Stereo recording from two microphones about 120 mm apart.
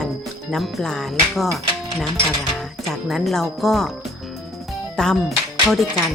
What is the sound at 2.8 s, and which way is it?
Speech, centre (ahead or behind).